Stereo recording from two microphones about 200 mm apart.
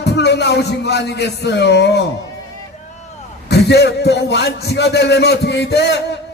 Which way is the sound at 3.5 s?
55° left (ahead or behind).